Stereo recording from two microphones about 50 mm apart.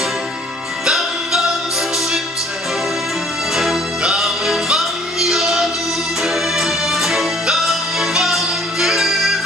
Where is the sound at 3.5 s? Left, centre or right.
Centre.